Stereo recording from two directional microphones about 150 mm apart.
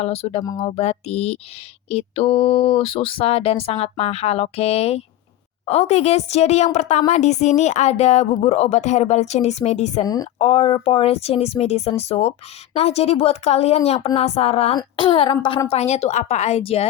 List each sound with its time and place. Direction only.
0.0 s speech: 45° left (ahead or behind)
10.0 s a woman's voice: 25° left (ahead or behind)
10.3 s speech: 40° left (ahead or behind)